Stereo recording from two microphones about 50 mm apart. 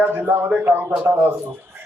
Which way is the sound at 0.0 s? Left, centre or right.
Right.